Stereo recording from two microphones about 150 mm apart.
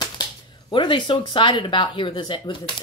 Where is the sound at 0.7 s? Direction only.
35° left (ahead or behind).